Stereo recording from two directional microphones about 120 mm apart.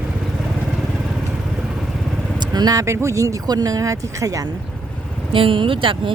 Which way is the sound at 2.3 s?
35° right (ahead or behind).